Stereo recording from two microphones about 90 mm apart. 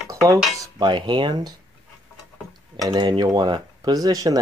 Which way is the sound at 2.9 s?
50° right (ahead or behind).